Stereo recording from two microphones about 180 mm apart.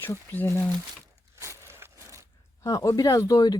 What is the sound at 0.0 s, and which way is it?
Speech, 10° left (ahead or behind).